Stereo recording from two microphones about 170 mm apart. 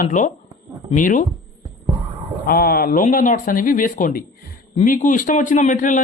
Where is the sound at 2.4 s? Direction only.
60° left (ahead or behind).